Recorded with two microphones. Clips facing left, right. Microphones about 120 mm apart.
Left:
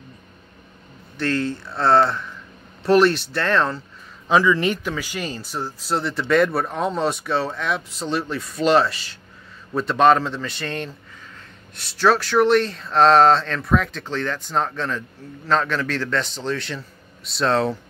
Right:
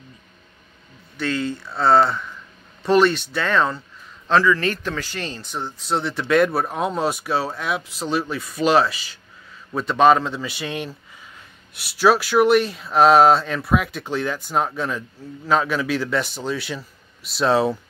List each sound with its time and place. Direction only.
1.1 s speech: centre (ahead or behind)
4.3 s speech: 15° left (ahead or behind); by 17.7 s 5° right (ahead or behind)